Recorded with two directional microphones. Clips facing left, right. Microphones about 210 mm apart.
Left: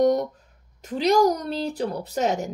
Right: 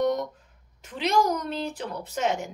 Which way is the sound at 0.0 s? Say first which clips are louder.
Left 5 dB; 40° left (ahead or behind).